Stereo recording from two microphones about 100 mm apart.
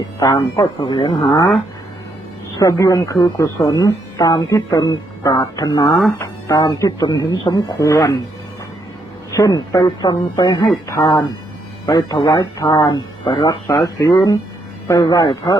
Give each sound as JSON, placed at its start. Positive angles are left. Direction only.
{"t": 0.2, "sound": "speech", "side_deg": 40}
{"t": 1.2, "sound": "speech", "side_deg": 30}
{"t": 2.6, "sound": "speech", "side_deg": 35}
{"t": 9.3, "sound": "speech", "side_deg": 35}
{"t": 10.8, "sound": "speech", "side_deg": 25}
{"t": 11.9, "sound": "speech", "side_deg": 40}
{"t": 12.8, "sound": "speech", "side_deg": 50}